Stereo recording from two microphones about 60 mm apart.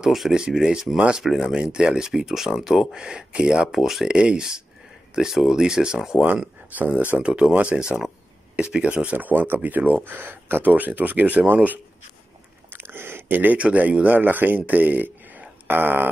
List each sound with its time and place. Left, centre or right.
0.0 s speech: centre
4.1 s speech: centre
12.7 s a sound: right
13.6 s speech: right